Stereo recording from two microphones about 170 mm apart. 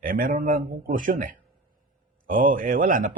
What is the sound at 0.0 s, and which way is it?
A man's voice, 55° right (ahead or behind).